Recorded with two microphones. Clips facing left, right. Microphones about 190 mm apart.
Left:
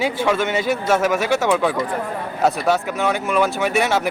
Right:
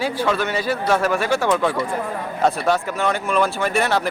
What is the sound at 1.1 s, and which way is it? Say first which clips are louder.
Speech: left 1 dB; 5° left (ahead or behind).